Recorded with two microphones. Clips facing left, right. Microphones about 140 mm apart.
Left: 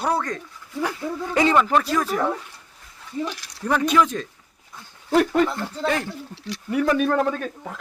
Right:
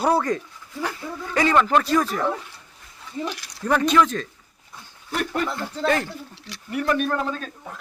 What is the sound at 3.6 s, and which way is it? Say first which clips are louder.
Speech: right 1 dB; 10° left (ahead or behind).